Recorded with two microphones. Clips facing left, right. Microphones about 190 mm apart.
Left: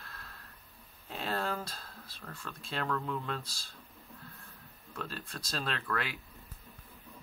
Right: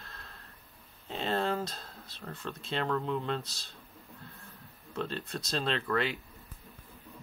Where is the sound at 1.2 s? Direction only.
20° right (ahead or behind).